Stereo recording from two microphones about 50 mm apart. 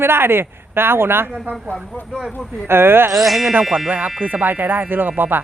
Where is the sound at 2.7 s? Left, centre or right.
Right.